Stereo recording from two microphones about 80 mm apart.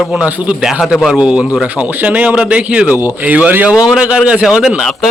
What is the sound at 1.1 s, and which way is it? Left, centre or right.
A man's voice, centre.